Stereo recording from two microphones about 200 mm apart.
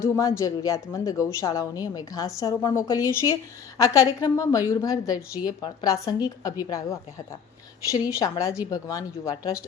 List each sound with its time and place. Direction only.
0.0 s a woman's voice: 15° left (ahead or behind)
7.9 s a woman's voice: 15° left (ahead or behind)